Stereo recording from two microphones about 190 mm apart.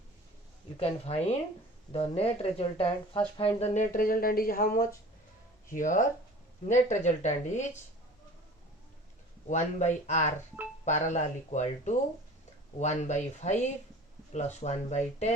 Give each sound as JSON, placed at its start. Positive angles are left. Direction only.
{"t": 0.8, "sound": "speech", "side_deg": 35}
{"t": 3.6, "sound": "speech", "side_deg": 40}
{"t": 9.5, "sound": "speech", "side_deg": 40}